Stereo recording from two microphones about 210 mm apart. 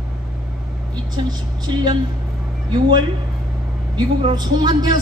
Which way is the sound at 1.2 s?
20° right (ahead or behind).